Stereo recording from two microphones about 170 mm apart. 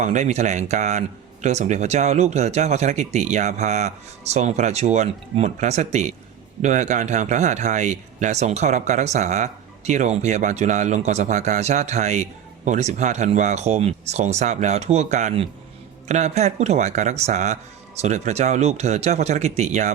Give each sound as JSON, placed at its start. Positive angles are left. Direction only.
{"t": 0.0, "sound": "speech", "side_deg": -45}